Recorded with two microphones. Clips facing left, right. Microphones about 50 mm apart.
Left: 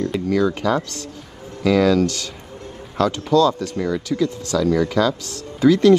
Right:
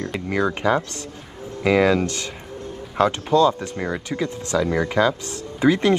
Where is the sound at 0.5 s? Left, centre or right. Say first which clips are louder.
Even; right.